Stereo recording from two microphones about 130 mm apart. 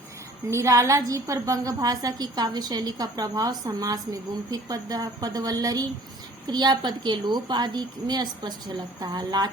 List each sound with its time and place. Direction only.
0.5 s a woman's voice: 25° right (ahead or behind)